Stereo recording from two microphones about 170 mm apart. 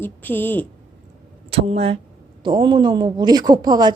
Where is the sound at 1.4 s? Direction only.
35° right (ahead or behind).